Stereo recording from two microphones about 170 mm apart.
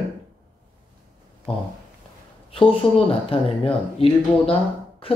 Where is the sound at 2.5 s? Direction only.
35° left (ahead or behind).